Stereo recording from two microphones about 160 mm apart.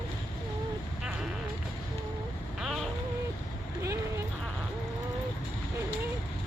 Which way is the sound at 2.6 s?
Centre (ahead or behind).